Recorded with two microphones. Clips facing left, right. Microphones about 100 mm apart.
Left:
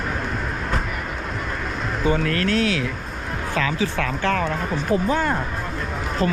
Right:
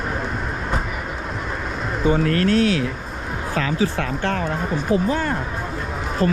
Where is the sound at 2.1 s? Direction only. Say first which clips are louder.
Right 6 dB; 35° right (ahead or behind).